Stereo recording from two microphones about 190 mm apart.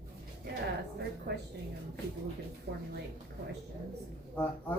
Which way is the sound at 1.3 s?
60° right (ahead or behind).